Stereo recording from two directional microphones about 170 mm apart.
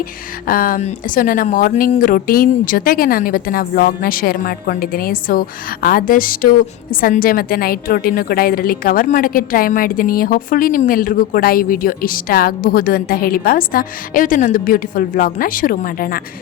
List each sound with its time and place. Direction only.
0.4 s a woman's voice: 55° left (ahead or behind)